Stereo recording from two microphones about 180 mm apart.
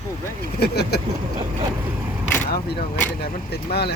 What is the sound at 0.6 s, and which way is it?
Speech, 60° left (ahead or behind).